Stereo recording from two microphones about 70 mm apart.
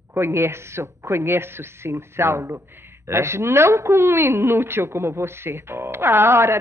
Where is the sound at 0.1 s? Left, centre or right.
Right.